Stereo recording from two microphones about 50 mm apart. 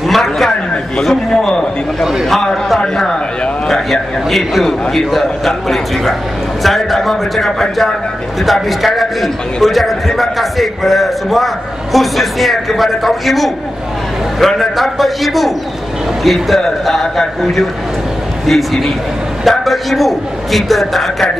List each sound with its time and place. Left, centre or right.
0.1 s a man's voice: centre
1.5 s a man's voice: centre
2.2 s a man's voice: centre